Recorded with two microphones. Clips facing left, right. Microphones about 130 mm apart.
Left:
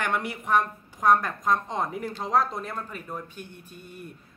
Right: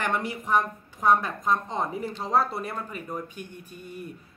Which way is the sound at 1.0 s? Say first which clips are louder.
Left 1 dB; 5° right (ahead or behind).